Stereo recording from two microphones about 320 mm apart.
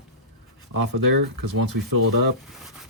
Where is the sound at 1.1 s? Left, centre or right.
Right.